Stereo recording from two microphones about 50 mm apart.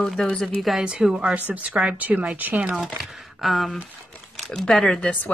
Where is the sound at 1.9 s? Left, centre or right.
Right.